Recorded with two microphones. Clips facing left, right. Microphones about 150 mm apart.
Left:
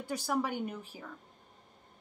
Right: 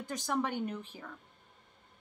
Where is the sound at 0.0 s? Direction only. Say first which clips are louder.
Left 1 dB; 10° left (ahead or behind).